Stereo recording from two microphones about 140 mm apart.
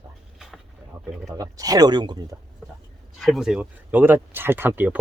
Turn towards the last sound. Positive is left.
turn(degrees=-15)  # may be behind; listen again after turning